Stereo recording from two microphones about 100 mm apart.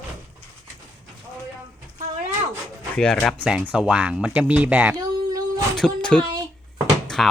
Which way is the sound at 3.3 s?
10° right (ahead or behind).